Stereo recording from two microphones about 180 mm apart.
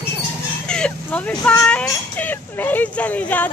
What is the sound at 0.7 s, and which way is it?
Speech, 5° left (ahead or behind).